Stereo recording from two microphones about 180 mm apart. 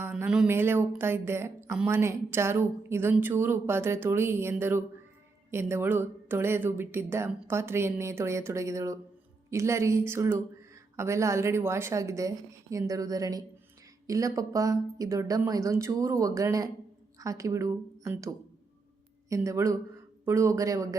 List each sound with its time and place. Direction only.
0.0 s a woman's voice: 10° right (ahead or behind)